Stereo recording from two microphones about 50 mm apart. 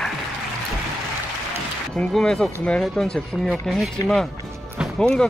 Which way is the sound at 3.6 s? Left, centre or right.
Centre.